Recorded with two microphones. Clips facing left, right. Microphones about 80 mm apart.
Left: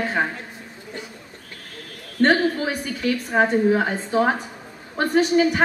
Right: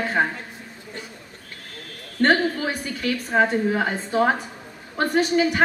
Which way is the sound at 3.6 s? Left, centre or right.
Centre.